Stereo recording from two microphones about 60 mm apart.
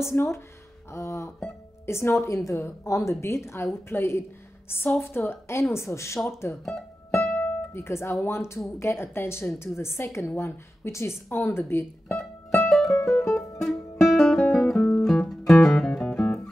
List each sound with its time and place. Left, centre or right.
0.0 s speech: left
2.2 s a woman's voice: left
6.6 s music: centre
7.2 s music: left
7.7 s speech: left
11.2 s a woman's voice: left
12.2 s music: centre